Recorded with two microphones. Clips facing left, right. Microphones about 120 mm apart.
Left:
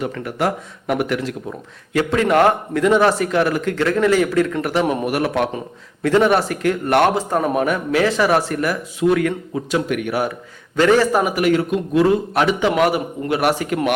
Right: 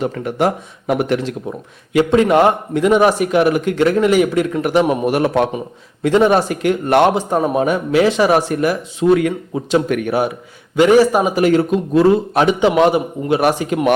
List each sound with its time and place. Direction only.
0.0 s speech: 25° right (ahead or behind)
10.8 s speech: 15° right (ahead or behind)